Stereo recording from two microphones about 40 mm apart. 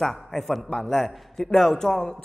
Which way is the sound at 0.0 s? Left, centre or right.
Centre.